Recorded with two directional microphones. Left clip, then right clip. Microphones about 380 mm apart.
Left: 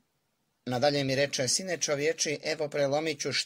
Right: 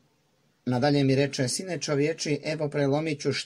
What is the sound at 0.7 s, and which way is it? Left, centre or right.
Speech, left.